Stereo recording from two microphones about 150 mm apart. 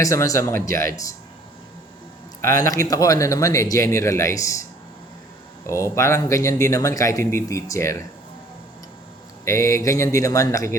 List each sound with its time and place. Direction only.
0.0 s speech: 20° left (ahead or behind)
2.6 s speech: 25° left (ahead or behind)
5.6 s speech: 20° left (ahead or behind)
9.4 s speech: 20° left (ahead or behind)